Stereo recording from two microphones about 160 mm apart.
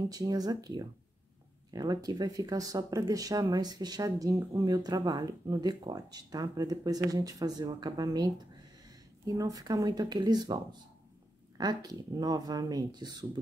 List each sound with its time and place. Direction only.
0.1 s speech: 25° right (ahead or behind)